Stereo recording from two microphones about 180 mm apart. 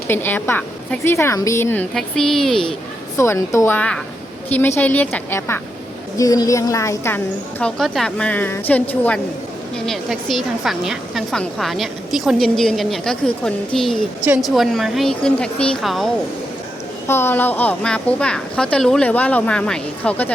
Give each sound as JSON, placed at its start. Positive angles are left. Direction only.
{"t": 0.1, "sound": "a woman's voice", "side_deg": 10}
{"t": 3.2, "sound": "a woman's voice", "side_deg": 15}
{"t": 7.6, "sound": "a woman's voice", "side_deg": 5}
{"t": 17.1, "sound": "a woman's voice", "side_deg": 10}